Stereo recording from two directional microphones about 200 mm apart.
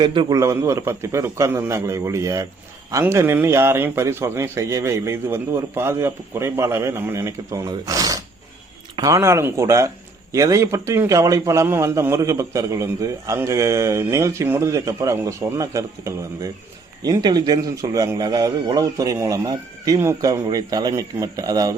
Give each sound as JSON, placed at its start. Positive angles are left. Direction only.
{"t": 0.0, "sound": "a man's voice", "side_deg": -25}